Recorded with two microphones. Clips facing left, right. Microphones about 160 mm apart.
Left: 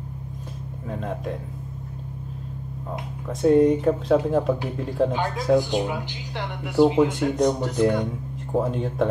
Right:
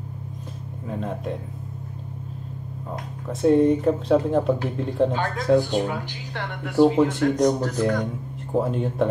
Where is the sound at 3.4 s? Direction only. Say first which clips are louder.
Even; centre (ahead or behind).